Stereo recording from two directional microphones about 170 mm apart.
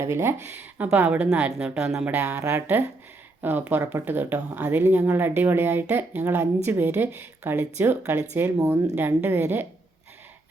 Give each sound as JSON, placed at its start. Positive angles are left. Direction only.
{"t": 0.0, "sound": "speech", "side_deg": -15}